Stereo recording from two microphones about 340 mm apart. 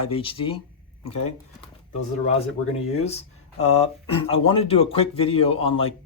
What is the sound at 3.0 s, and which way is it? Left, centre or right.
A man's voice, centre.